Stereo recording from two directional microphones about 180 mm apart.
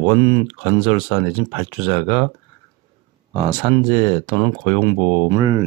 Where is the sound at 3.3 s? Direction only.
20° right (ahead or behind).